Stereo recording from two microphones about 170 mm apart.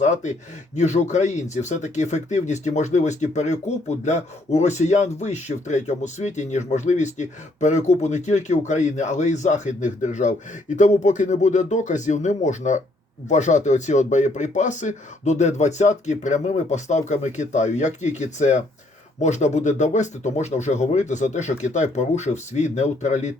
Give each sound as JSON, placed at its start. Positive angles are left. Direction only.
{"t": 0.0, "sound": "speech", "side_deg": 45}